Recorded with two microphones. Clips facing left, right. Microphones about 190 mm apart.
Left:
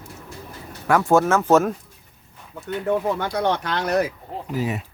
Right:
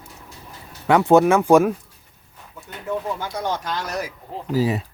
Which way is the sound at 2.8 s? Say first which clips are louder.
Left 4 dB; 65° left (ahead or behind).